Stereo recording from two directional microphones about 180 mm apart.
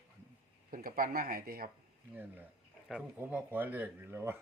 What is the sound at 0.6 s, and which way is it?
Speech, 50° right (ahead or behind).